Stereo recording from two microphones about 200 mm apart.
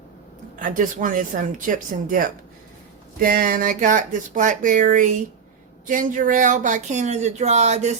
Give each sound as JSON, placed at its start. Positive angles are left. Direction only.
{"t": 0.6, "sound": "speech", "side_deg": -40}